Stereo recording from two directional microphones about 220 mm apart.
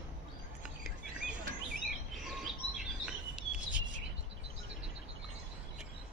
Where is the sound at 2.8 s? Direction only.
5° right (ahead or behind).